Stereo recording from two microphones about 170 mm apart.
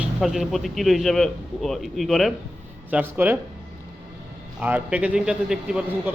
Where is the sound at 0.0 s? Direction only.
Centre (ahead or behind).